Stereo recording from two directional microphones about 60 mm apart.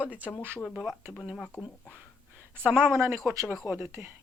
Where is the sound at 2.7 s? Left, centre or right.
Right.